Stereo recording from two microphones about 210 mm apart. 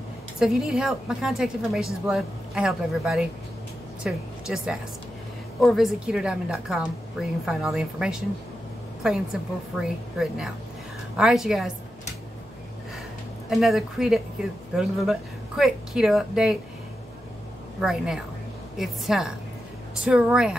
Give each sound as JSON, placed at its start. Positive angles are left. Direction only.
{"t": 0.4, "sound": "a woman's voice", "side_deg": -5}
{"t": 13.5, "sound": "speech", "side_deg": 0}
{"t": 17.7, "sound": "speech", "side_deg": -5}